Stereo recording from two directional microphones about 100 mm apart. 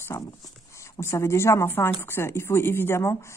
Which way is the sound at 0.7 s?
30° left (ahead or behind).